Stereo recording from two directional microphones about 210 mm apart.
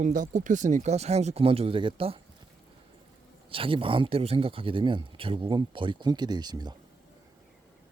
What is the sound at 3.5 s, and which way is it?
Speech, 25° right (ahead or behind).